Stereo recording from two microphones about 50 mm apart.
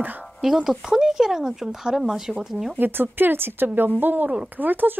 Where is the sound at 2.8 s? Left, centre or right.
Right.